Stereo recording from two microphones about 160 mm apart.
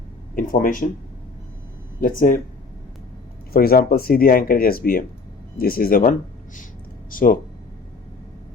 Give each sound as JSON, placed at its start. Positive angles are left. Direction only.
{"t": 0.3, "sound": "speech", "side_deg": 55}
{"t": 2.0, "sound": "speech", "side_deg": 60}
{"t": 3.5, "sound": "speech", "side_deg": 70}